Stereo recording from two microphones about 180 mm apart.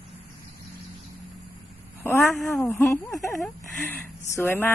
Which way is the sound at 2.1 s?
Centre (ahead or behind).